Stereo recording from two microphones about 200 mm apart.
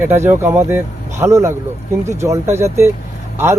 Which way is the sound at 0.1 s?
10° right (ahead or behind).